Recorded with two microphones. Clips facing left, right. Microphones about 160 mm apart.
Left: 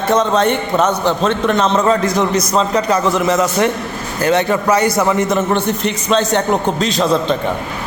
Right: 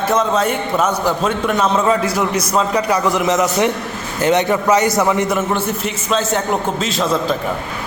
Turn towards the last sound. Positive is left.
turn(degrees=0)  # may be behind; listen again after turning